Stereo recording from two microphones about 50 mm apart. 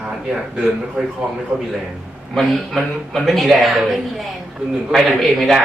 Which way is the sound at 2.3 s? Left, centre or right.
Centre.